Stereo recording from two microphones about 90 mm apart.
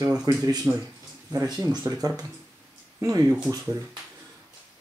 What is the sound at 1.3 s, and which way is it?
Speech, 40° right (ahead or behind).